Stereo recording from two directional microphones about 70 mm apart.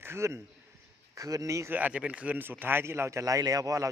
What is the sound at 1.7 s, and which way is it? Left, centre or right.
Speech, right.